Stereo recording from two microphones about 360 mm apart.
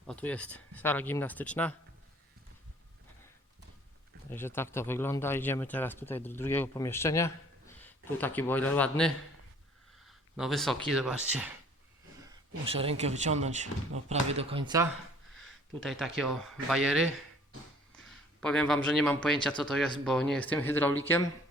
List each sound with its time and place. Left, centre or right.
0.1 s speech: centre
4.3 s speech: centre
12.6 s speech: centre
15.4 s a sound: centre
16.1 s a man's voice: centre